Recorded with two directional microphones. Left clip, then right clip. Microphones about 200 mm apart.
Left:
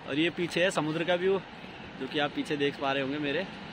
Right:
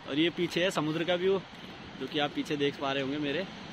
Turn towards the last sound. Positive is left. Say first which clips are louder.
# left 1 dB
turn(degrees=0)  # may be behind; listen again after turning